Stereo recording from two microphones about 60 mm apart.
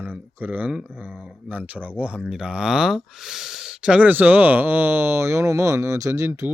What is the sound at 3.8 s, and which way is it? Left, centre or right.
Speech, right.